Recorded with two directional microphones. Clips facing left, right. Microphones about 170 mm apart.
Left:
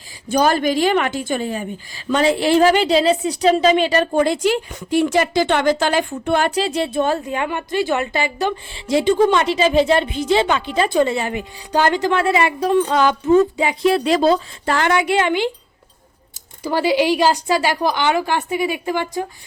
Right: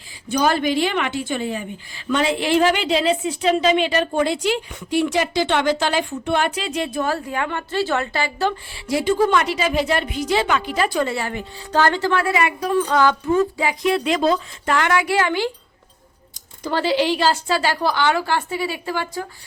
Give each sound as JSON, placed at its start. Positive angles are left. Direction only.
{"t": 0.3, "sound": "a woman's voice", "side_deg": 45}
{"t": 13.8, "sound": "speech", "side_deg": 35}
{"t": 16.6, "sound": "a woman's voice", "side_deg": 10}